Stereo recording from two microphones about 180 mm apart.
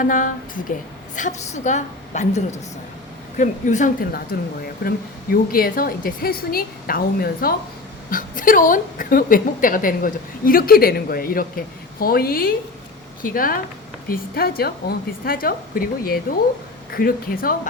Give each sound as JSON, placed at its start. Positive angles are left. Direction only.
{"t": 0.0, "sound": "a woman's voice", "side_deg": 50}